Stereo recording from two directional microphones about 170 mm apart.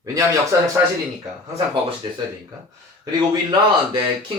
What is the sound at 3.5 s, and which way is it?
Speech, 25° right (ahead or behind).